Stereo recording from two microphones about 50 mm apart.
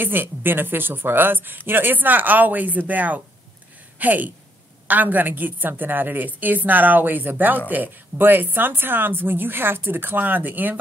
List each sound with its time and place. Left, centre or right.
0.0 s a woman's voice: right